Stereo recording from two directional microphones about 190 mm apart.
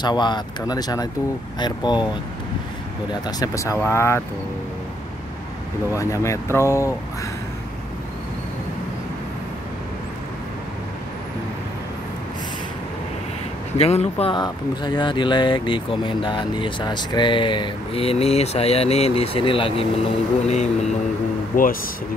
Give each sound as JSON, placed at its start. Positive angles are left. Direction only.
{"t": 0.0, "sound": "speech", "side_deg": 25}
{"t": 3.1, "sound": "speech", "side_deg": 20}
{"t": 5.9, "sound": "speech", "side_deg": 15}
{"t": 13.7, "sound": "speech", "side_deg": 35}